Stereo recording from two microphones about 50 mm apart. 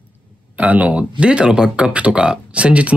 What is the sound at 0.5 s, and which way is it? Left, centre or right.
Speech, right.